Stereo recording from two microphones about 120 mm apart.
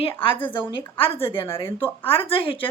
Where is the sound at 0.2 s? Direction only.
45° left (ahead or behind).